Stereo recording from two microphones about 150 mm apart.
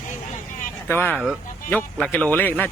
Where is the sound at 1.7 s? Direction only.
10° left (ahead or behind).